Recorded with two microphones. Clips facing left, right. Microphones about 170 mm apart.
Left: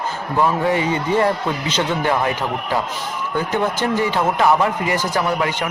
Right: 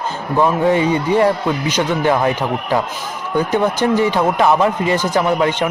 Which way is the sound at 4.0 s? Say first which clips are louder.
Right 1 dB; 15° right (ahead or behind).